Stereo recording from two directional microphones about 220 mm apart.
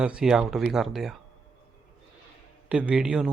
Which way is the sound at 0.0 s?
5° right (ahead or behind).